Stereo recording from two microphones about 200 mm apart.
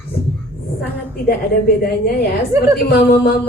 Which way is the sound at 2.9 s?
50° left (ahead or behind).